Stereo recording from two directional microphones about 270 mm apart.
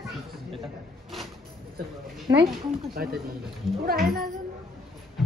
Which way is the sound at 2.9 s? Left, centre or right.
Right.